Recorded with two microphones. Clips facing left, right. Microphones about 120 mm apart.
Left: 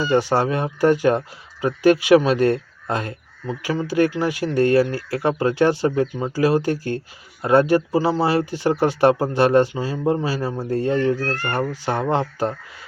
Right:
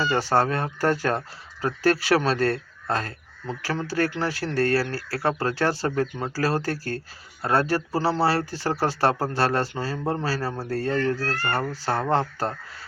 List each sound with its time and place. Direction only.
0.0 s a man's voice: 15° left (ahead or behind)